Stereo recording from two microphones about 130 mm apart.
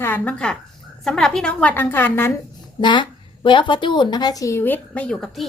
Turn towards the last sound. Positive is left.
turn(degrees=5)  # may be behind; listen again after turning